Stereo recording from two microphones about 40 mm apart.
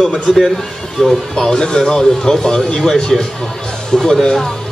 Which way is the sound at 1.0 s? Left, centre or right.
Centre.